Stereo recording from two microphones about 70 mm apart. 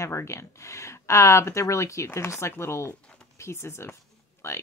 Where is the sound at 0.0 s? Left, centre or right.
Left.